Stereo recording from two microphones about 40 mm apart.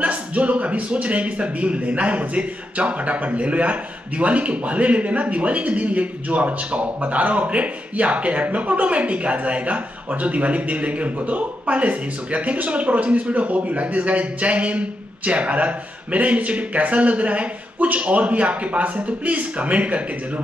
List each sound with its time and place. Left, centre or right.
0.0 s speech: right